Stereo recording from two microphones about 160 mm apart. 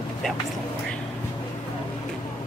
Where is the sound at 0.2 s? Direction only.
5° left (ahead or behind).